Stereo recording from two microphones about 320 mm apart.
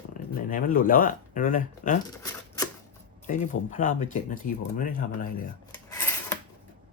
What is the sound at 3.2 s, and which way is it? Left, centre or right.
Speech, left.